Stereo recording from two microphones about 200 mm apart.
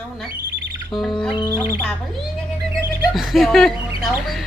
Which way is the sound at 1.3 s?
25° left (ahead or behind).